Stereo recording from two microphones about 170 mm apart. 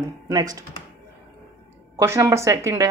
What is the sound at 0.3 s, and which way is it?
Speech, 20° right (ahead or behind).